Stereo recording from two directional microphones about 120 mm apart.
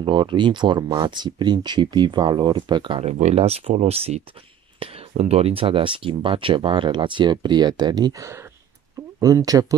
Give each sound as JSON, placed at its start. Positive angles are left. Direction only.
{"t": 0.0, "sound": "speech", "side_deg": -40}
{"t": 3.0, "sound": "speech", "side_deg": -65}